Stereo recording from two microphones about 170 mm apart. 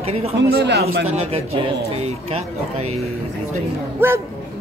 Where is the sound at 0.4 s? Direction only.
75° right (ahead or behind).